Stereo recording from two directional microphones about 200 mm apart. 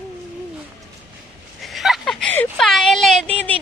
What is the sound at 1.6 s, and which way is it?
A woman's voice, centre (ahead or behind).